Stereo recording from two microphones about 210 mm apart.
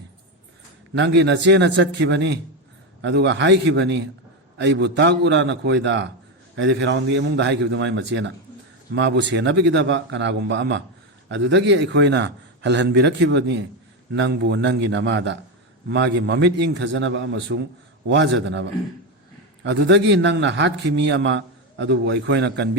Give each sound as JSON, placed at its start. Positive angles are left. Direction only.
{"t": 0.9, "sound": "a man's voice", "side_deg": -55}